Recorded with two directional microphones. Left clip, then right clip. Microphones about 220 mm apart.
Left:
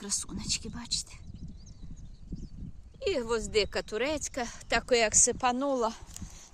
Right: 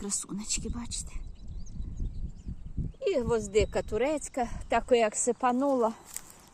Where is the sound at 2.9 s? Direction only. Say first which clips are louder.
Right 2 dB; 15° left (ahead or behind).